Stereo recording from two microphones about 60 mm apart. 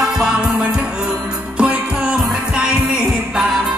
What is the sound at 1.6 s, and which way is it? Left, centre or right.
Music, right.